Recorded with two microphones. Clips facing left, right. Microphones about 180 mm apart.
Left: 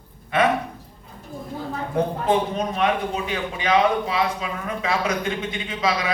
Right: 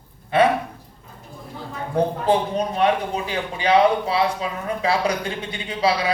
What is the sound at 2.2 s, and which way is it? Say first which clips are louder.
A man's voice: right 1 dB; 35° right (ahead or behind).